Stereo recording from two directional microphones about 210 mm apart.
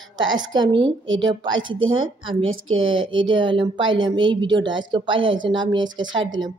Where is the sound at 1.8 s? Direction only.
75° right (ahead or behind).